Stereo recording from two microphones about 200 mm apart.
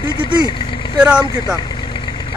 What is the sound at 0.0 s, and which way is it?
Vehicle, 20° left (ahead or behind).